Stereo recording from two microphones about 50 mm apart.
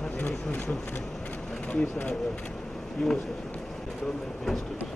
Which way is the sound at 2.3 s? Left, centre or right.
Centre.